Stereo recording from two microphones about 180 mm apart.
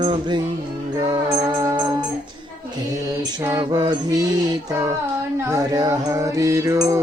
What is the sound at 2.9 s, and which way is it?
Music, 20° right (ahead or behind).